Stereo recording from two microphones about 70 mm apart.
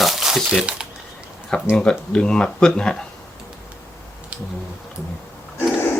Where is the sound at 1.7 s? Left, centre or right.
Centre.